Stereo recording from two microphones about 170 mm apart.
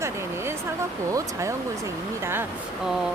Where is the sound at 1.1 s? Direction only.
15° right (ahead or behind).